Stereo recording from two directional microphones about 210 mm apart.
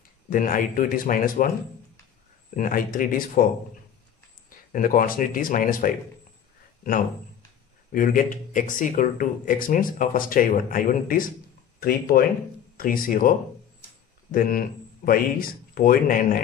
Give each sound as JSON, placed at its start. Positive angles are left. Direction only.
{"t": 0.3, "sound": "speech", "side_deg": 40}
{"t": 2.5, "sound": "speech", "side_deg": 40}
{"t": 4.7, "sound": "speech", "side_deg": 40}
{"t": 7.9, "sound": "a man's voice", "side_deg": 40}
{"t": 14.3, "sound": "a man's voice", "side_deg": 40}